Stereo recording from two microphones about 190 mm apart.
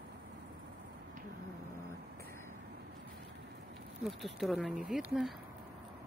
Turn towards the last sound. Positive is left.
turn(degrees=0)  # may be behind; listen again after turning